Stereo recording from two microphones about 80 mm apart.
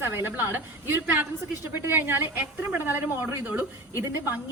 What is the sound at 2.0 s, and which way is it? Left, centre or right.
A woman's voice, right.